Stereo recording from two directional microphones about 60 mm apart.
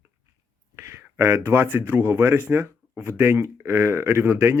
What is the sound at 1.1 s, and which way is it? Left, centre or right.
Speech, right.